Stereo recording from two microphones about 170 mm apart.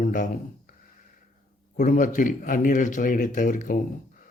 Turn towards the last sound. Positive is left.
turn(degrees=50)  # may be behind; listen again after turning